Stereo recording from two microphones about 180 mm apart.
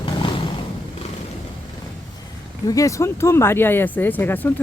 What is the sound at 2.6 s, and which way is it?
Speech, 20° left (ahead or behind).